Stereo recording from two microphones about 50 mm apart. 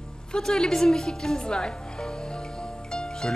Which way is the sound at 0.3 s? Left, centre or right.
Centre.